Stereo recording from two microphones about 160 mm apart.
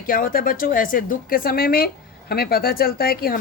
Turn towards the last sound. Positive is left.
turn(degrees=70)  # may be behind; listen again after turning